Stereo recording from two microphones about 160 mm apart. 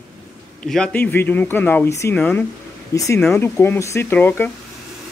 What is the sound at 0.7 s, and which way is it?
Speech, 5° left (ahead or behind).